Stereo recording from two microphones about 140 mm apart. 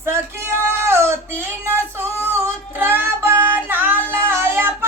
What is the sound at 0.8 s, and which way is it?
Female singing, 20° right (ahead or behind).